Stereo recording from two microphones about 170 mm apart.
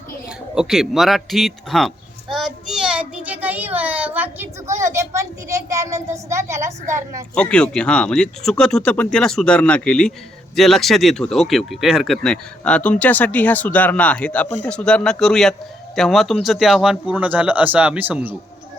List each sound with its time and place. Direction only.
0.5 s speech: 5° right (ahead or behind)
7.3 s speech: 5° left (ahead or behind); by 18.3 s 10° right (ahead or behind)